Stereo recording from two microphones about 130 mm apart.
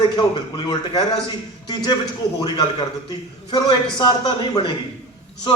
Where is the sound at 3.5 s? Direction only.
30° left (ahead or behind).